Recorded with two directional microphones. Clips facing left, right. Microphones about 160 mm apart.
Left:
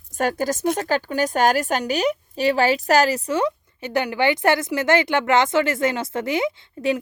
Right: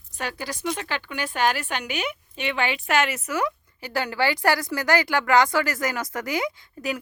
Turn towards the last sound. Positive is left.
turn(degrees=25)  # may be behind; listen again after turning